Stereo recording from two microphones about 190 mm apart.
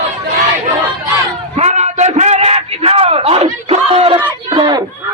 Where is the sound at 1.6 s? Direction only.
35° right (ahead or behind).